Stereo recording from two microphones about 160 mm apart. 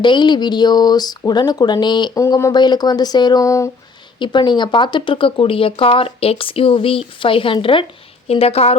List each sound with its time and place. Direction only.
0.0 s speech: 30° left (ahead or behind)